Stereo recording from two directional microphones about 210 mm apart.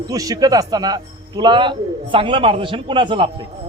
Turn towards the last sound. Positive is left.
turn(degrees=-25)  # may be behind; listen again after turning